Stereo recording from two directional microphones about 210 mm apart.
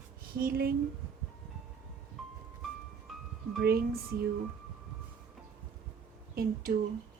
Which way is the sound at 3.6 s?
45° right (ahead or behind).